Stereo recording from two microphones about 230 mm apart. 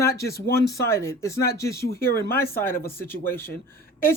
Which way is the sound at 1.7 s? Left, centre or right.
Left.